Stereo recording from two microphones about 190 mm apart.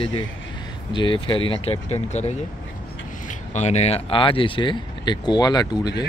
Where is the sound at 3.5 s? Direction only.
35° left (ahead or behind).